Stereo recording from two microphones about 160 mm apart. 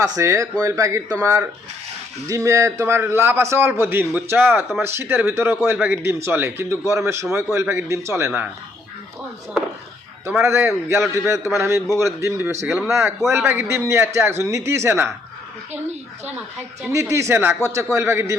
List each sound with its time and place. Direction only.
0.0 s a man's voice: 20° right (ahead or behind)
10.2 s a man's voice: 15° right (ahead or behind)
16.9 s a man's voice: 20° right (ahead or behind)